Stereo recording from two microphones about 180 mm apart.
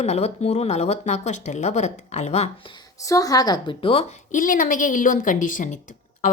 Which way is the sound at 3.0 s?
20° left (ahead or behind).